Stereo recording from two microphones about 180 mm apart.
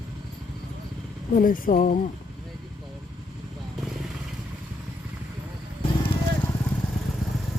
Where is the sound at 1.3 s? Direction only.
50° left (ahead or behind).